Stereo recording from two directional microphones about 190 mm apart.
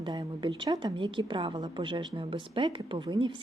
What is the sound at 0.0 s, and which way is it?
A woman's voice, 25° right (ahead or behind).